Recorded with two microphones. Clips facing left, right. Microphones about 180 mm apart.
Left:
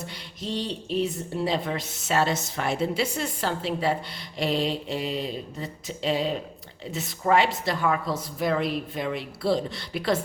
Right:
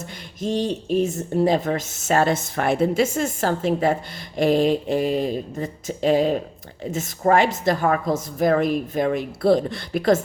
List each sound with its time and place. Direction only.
0.0 s speech: 45° right (ahead or behind)